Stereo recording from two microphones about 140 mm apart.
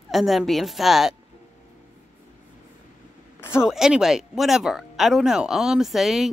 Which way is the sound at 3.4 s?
15° left (ahead or behind).